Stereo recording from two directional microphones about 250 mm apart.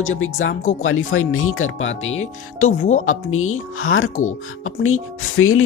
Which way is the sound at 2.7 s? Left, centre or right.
Left.